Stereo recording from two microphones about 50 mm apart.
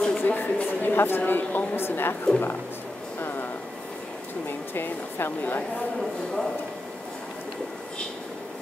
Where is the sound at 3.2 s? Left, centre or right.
Left.